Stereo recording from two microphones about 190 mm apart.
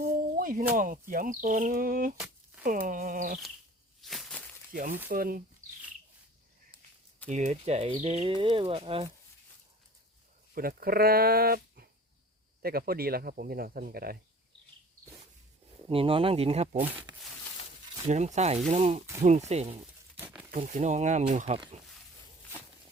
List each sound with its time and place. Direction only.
0.0 s music: 45° right (ahead or behind)
0.7 s speech: 45° right (ahead or behind)
4.0 s a sound: centre (ahead or behind)
4.7 s speech: 45° right (ahead or behind)
7.3 s speech: 40° right (ahead or behind)
10.5 s speech: 50° right (ahead or behind)
15.9 s speech: 30° right (ahead or behind)
16.7 s speech: 10° right (ahead or behind)
18.0 s speech: 40° right (ahead or behind)
20.1 s crumpling: 10° right (ahead or behind)
20.6 s speech: 40° right (ahead or behind)